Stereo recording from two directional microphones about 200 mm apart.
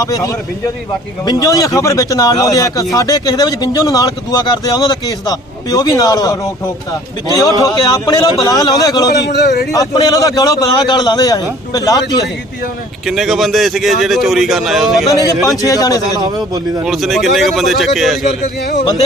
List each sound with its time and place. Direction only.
0.0 s speech: 15° left (ahead or behind)
9.2 s a man's voice: 55° left (ahead or behind)
9.7 s speech: 20° left (ahead or behind)
13.1 s speech: centre (ahead or behind)
15.0 s speech: 15° left (ahead or behind)
16.8 s speech: centre (ahead or behind)